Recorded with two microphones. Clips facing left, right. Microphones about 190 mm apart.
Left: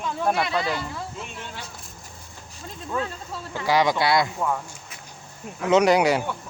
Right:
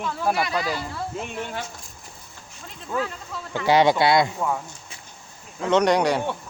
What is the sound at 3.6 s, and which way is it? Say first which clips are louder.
Speech: right 3 dB; 25° right (ahead or behind).